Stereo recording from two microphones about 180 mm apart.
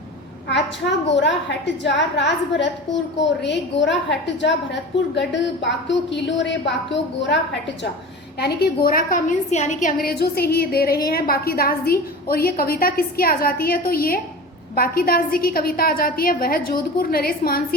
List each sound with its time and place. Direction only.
0.5 s a woman's voice: 75° left (ahead or behind)
8.4 s a woman's voice: 60° left (ahead or behind)